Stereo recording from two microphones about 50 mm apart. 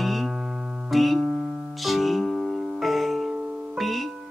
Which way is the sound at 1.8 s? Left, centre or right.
Centre.